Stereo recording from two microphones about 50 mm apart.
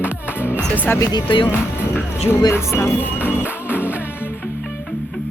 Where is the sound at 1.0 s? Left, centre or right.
Left.